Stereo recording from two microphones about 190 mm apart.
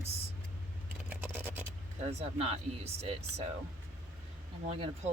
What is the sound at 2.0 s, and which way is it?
Speech, 35° right (ahead or behind).